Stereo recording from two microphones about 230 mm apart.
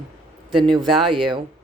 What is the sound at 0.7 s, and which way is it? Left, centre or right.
Speech, right.